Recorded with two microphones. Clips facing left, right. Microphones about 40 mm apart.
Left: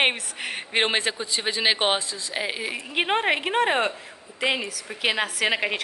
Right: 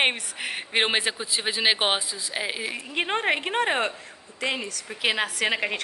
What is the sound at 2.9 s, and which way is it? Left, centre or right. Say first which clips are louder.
A woman's voice: left 2 dB; centre.